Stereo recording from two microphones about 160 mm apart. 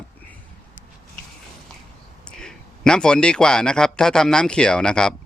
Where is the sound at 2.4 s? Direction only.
5° left (ahead or behind).